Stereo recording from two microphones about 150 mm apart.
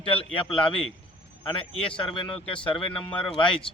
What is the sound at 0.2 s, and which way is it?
Speech, 35° left (ahead or behind).